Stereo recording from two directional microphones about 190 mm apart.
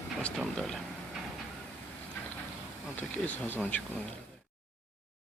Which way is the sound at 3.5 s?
10° left (ahead or behind).